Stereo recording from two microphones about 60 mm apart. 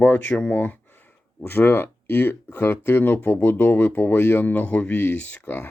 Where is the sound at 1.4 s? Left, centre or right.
Left.